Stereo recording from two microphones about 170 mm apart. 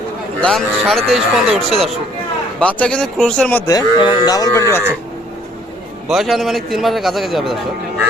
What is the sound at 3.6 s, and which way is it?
Speech, 25° left (ahead or behind).